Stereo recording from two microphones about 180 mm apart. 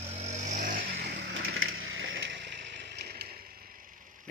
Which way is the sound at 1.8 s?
90° right.